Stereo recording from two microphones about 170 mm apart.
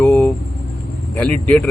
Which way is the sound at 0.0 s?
15° left (ahead or behind).